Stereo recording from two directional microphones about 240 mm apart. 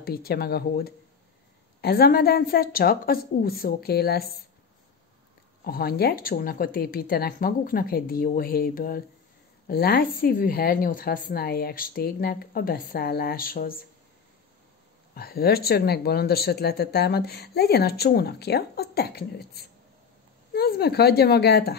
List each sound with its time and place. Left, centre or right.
0.0 s speech: left
5.6 s speech: left
15.1 s speech: left